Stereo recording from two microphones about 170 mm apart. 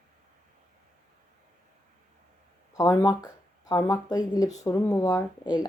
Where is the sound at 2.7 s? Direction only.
20° left (ahead or behind).